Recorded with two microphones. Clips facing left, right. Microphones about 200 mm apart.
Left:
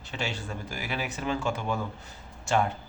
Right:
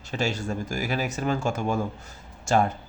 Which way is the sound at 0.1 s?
40° right (ahead or behind).